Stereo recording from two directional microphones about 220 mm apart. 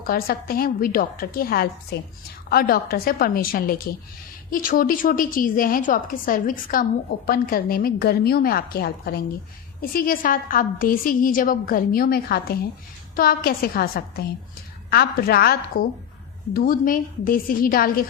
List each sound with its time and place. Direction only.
0.1 s a woman's voice: 45° left (ahead or behind)